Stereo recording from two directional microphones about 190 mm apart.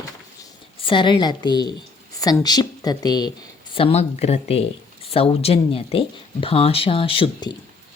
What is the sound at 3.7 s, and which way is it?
Speech, 30° left (ahead or behind).